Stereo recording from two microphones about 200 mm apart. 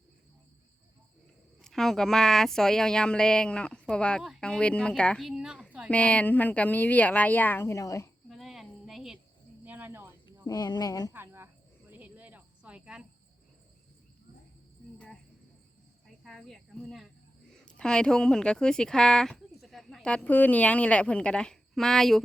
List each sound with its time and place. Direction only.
1.6 s speech: centre (ahead or behind)
8.3 s insect: centre (ahead or behind)
9.6 s cricket: 10° right (ahead or behind)
10.4 s speech: 20° left (ahead or behind)
11.1 s a sound: 10° right (ahead or behind)
11.9 s cricket: 10° right (ahead or behind)
14.9 s cricket: 5° left (ahead or behind)
17.7 s speech: 5° left (ahead or behind)